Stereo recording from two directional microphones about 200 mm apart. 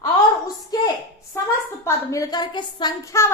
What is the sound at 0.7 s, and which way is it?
A woman's voice, 20° left (ahead or behind).